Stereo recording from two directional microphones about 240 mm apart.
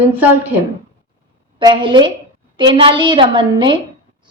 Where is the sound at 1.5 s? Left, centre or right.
Centre.